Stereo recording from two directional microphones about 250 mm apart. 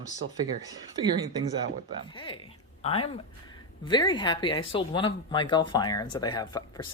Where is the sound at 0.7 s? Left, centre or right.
Centre.